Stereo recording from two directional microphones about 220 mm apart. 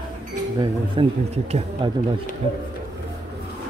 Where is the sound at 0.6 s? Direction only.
25° right (ahead or behind).